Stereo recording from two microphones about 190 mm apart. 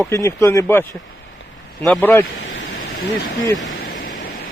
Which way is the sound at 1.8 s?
5° left (ahead or behind).